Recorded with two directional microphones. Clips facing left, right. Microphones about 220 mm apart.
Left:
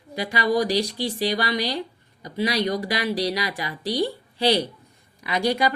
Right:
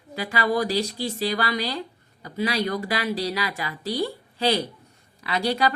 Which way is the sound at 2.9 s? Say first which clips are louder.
Left 2 dB; 15° left (ahead or behind).